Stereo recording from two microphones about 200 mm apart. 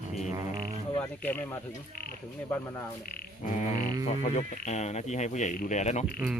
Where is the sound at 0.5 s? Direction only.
25° right (ahead or behind).